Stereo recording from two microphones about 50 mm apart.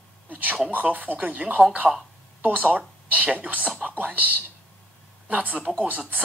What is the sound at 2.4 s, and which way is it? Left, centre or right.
Speech, right.